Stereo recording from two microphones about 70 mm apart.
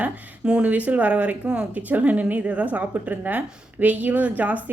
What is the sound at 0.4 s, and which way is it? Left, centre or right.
Speech, centre.